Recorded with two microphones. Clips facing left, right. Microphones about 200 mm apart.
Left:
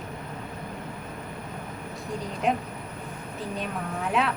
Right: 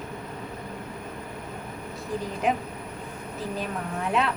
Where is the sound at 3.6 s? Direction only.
Centre (ahead or behind).